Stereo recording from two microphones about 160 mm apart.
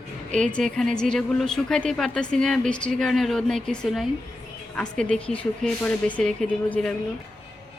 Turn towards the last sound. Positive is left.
turn(degrees=5)  # may be behind; listen again after turning